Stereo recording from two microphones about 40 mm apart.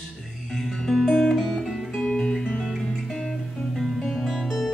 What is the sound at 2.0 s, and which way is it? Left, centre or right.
Guitar, centre.